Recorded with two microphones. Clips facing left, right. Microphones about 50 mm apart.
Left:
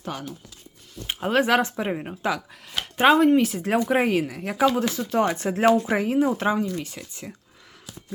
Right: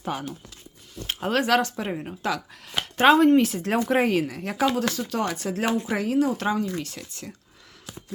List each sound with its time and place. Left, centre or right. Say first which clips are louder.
0.0 s speech: right 3 dB; centre
1.0 s a sound: left 1 dB; centre
1.4 s speech: left 2 dB; centre
3.0 s speech: even; centre
4.7 s speech: left 2 dB; centre